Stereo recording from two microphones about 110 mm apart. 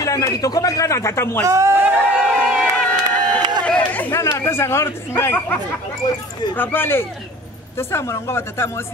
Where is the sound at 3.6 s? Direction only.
10° left (ahead or behind).